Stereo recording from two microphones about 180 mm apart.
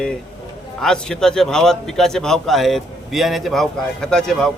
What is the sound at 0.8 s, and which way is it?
A man's voice, 5° left (ahead or behind).